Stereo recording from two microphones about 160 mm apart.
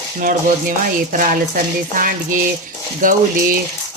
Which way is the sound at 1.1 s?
55° right (ahead or behind).